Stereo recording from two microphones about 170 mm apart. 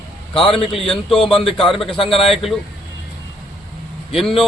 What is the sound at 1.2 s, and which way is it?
Speech, 35° left (ahead or behind).